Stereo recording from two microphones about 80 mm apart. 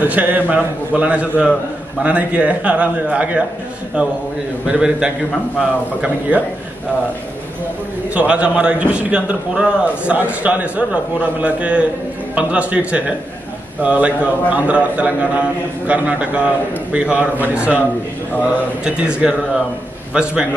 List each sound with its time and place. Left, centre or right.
0.0 s a man's voice: right
4.6 s a man's voice: centre
8.1 s a man's voice: centre
18.9 s a man's voice: centre